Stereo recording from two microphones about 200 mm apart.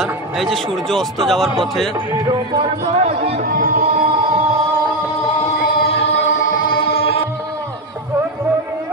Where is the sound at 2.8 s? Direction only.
35° right (ahead or behind).